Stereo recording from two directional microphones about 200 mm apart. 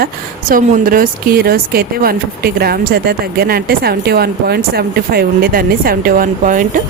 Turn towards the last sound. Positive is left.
turn(degrees=-40)  # may be behind; listen again after turning